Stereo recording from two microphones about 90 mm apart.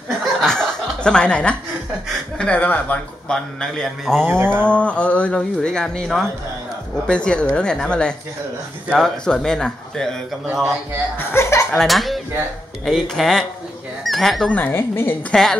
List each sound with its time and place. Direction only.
0.2 s chuckle: 5° left (ahead or behind)
2.3 s speech: 15° left (ahead or behind)
3.6 s speech: 5° left (ahead or behind)
4.3 s livestock: 25° right (ahead or behind)
4.6 s speech: 15° left (ahead or behind); by 10.8 s centre (ahead or behind)
11.1 s a woman's voice: 30° left (ahead or behind)
11.8 s speech: centre (ahead or behind)
14.5 s a woman's voice: 25° left (ahead or behind)